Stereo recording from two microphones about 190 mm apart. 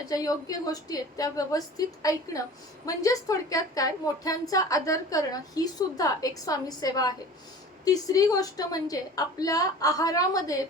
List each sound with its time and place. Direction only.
0.0 s a woman's voice: 20° left (ahead or behind)